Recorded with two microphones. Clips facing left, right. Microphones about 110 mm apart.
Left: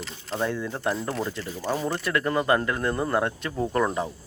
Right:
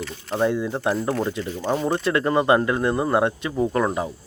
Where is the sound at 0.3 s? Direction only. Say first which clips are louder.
Right 6 dB; 15° right (ahead or behind).